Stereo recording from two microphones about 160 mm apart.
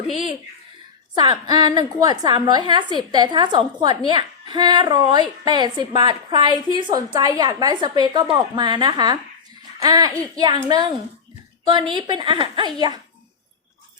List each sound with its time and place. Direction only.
1.2 s a woman's voice: 25° right (ahead or behind)